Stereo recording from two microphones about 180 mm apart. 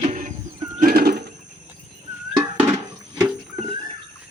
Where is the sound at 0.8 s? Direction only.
55° right (ahead or behind).